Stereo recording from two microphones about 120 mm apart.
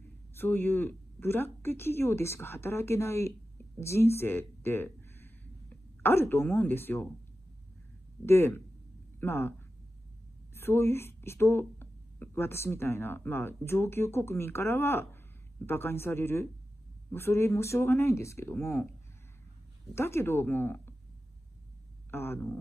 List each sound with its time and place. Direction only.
0.3 s a woman's voice: 20° left (ahead or behind)
8.3 s a woman's voice: 20° left (ahead or behind)
10.5 s a woman's voice: 20° left (ahead or behind)
19.9 s a woman's voice: 20° left (ahead or behind)
22.1 s a woman's voice: 20° left (ahead or behind)